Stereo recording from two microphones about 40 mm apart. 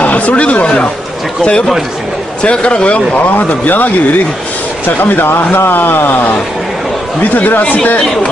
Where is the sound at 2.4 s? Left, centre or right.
Left.